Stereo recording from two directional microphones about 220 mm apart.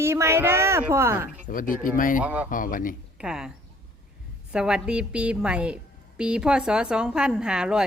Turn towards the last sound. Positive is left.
turn(degrees=-5)  # may be behind; listen again after turning